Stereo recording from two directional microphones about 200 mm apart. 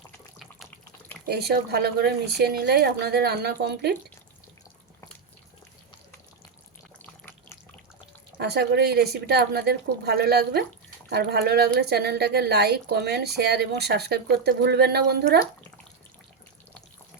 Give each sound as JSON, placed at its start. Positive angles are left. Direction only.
{"t": 1.3, "sound": "a woman's voice", "side_deg": -55}
{"t": 7.0, "sound": "water", "side_deg": 10}
{"t": 8.4, "sound": "a woman's voice", "side_deg": -55}